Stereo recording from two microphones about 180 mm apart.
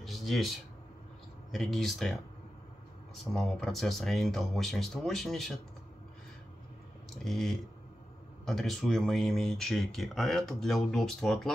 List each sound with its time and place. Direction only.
0.0 s a sound: centre (ahead or behind)
1.5 s speech: centre (ahead or behind)
3.3 s speech: centre (ahead or behind)
7.2 s speech: centre (ahead or behind)